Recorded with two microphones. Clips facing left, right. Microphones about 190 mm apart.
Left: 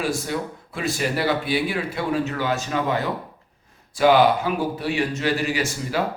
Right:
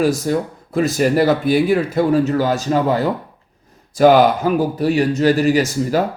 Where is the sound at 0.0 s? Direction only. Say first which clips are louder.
Right 8 dB; 40° right (ahead or behind).